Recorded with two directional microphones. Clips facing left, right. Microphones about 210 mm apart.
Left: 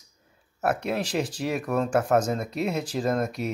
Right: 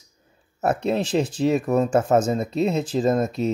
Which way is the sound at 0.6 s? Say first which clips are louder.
Right 4 dB; 25° right (ahead or behind).